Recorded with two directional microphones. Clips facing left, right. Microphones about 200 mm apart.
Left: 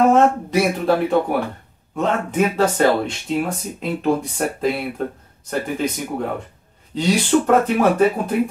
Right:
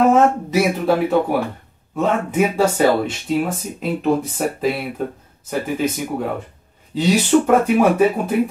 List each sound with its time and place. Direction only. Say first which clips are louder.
0.1 s speech: even; 5° right (ahead or behind)